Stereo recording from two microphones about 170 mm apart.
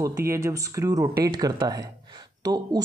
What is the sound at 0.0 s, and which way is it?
Speech, 15° right (ahead or behind).